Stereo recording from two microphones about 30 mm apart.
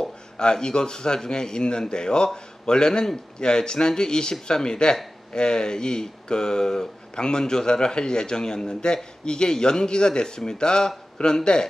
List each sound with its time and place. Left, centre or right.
0.4 s speech: left